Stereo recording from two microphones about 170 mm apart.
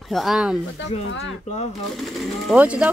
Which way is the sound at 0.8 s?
90° left.